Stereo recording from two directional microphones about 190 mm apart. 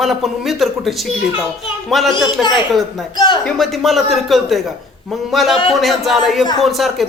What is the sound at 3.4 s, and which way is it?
Speech, centre (ahead or behind).